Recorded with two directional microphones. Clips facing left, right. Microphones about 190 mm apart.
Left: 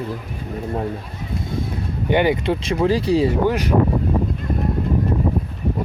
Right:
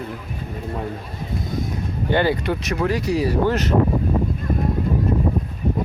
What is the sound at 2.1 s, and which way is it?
Speech, 15° left (ahead or behind).